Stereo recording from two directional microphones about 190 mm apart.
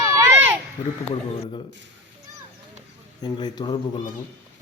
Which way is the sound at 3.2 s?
20° left (ahead or behind).